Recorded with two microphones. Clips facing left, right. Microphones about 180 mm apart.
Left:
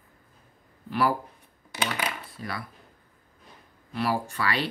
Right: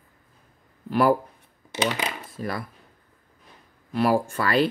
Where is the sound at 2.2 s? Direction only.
45° right (ahead or behind).